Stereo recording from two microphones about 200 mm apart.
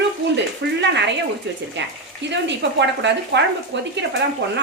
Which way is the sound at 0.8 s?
60° right (ahead or behind).